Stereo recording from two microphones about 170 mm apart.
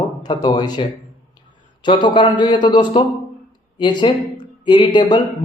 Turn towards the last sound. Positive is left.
turn(degrees=25)  # may be behind; listen again after turning